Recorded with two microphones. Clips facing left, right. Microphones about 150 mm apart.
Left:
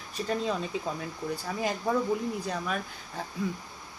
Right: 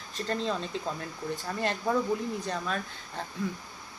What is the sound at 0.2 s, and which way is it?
Speech, 5° left (ahead or behind).